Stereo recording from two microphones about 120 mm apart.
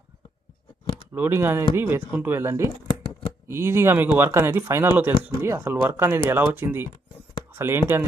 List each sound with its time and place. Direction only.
1.1 s speech: 15° right (ahead or behind)